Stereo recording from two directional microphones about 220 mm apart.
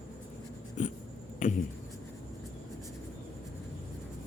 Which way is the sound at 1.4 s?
35° left (ahead or behind).